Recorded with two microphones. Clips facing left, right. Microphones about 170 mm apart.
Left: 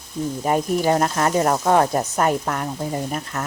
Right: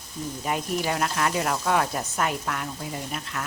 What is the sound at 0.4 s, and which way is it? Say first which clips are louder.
A woman's voice: left 8 dB; 40° left (ahead or behind).